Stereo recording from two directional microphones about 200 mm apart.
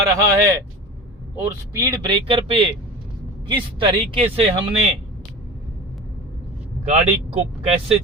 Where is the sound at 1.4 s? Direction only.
15° right (ahead or behind).